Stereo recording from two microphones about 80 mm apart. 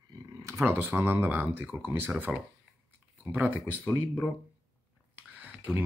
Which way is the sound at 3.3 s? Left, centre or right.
Right.